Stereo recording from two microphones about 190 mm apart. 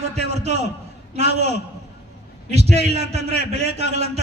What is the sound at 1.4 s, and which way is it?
A man's voice, 35° right (ahead or behind).